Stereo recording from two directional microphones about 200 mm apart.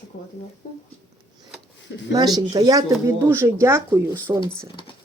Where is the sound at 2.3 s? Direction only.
20° right (ahead or behind).